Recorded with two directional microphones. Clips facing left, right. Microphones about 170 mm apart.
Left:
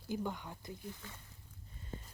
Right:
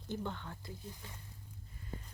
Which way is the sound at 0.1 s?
10° left (ahead or behind).